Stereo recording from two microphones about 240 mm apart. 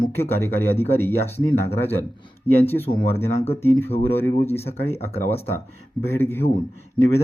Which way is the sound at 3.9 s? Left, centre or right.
Left.